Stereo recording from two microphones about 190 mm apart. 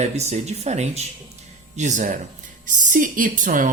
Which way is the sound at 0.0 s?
35° right (ahead or behind).